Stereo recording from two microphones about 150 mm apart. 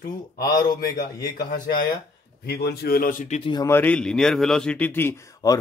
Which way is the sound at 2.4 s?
90° left.